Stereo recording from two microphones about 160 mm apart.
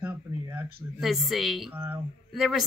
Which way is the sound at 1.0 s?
Centre (ahead or behind).